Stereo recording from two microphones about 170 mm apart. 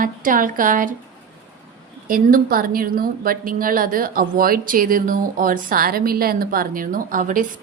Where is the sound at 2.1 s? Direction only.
55° right (ahead or behind).